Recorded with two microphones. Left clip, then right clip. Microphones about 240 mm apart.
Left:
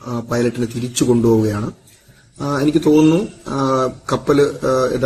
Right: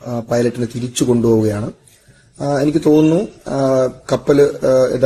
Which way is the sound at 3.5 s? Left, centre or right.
Centre.